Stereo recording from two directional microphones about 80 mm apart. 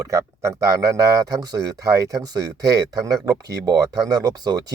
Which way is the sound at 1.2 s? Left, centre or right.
Right.